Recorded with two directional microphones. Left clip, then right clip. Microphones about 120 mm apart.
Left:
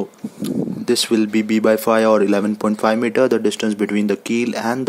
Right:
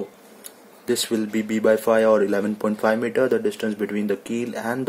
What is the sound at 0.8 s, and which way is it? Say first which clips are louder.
Speech: left 5 dB; 40° left (ahead or behind).